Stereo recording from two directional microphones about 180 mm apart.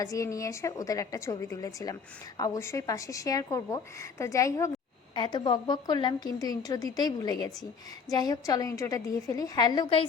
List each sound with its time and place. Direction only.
0.0 s a woman's voice: 20° left (ahead or behind)